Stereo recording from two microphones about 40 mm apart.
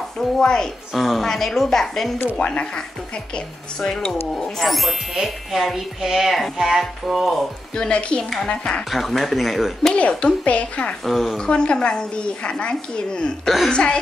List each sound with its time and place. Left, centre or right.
0.4 s a woman's voice: centre
0.9 s speech: centre
1.2 s a woman's voice: centre
2.3 s speech: left
4.4 s speech: centre
7.7 s speech: left
8.9 s speech: centre
9.9 s a woman's voice: left
11.1 s speech: centre
11.3 s speech: left